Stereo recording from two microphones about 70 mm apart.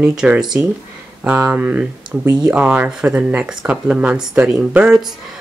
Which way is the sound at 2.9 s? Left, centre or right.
Centre.